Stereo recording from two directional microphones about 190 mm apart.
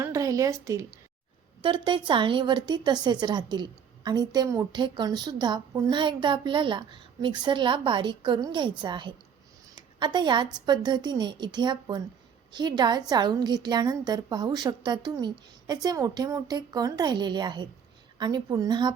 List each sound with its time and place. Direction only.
0.0 s a woman's voice: 15° right (ahead or behind)